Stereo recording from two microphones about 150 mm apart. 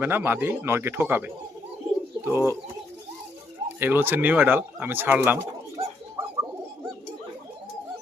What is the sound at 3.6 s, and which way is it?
Speech, 15° right (ahead or behind).